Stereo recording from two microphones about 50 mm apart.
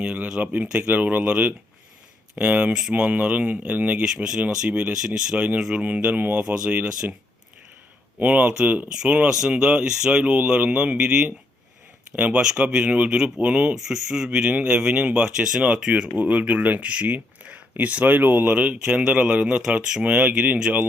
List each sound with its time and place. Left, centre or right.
0.0 s a sound: right
0.3 s speech: right
4.0 s speech: centre; by 6.4 s right
6.4 s speech: right
8.2 s speech: right
13.8 s speech: centre
16.1 s speech: right
18.5 s speech: right